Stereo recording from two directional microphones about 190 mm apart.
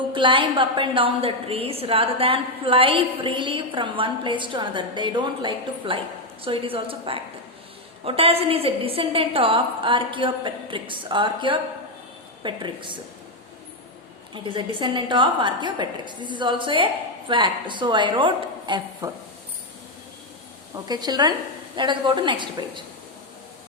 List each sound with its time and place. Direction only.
0.1 s a woman's voice: 25° right (ahead or behind)
14.3 s a woman's voice: 25° right (ahead or behind)
20.8 s a woman's voice: 20° right (ahead or behind)